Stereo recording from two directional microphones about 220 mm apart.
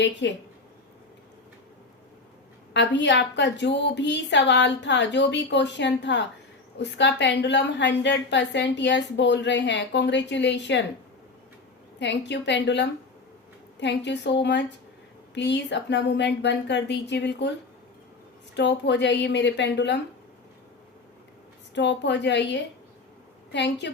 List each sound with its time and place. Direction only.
0.0 s a woman's voice: 55° left (ahead or behind)
2.7 s a woman's voice: 50° left (ahead or behind)
11.9 s a woman's voice: 50° left (ahead or behind)
18.5 s a woman's voice: 55° left (ahead or behind)
21.8 s a woman's voice: 50° left (ahead or behind)